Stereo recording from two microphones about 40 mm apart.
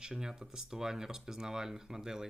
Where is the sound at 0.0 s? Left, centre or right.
Centre.